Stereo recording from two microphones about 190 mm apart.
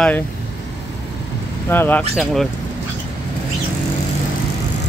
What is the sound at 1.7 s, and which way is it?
Speech, 10° left (ahead or behind).